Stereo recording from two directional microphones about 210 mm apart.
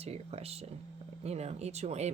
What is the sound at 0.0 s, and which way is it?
Speech, 30° right (ahead or behind).